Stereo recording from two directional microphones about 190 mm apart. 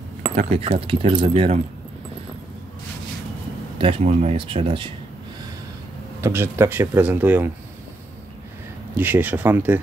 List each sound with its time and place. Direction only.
0.4 s speech: 30° right (ahead or behind)
3.7 s speech: 30° right (ahead or behind)
6.2 s speech: 15° right (ahead or behind)
8.9 s speech: 10° right (ahead or behind)